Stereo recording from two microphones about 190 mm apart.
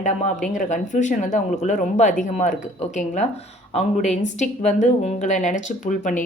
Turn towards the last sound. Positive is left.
turn(degrees=40)  # may be behind; listen again after turning